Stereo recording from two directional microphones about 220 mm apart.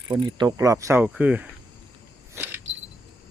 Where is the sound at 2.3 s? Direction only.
10° right (ahead or behind).